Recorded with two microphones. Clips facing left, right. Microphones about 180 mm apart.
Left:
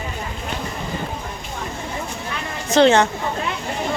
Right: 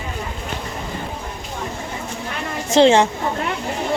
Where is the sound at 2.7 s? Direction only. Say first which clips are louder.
Right 1 dB; 25° right (ahead or behind).